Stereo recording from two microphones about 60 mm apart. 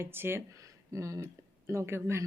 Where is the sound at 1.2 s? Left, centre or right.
Right.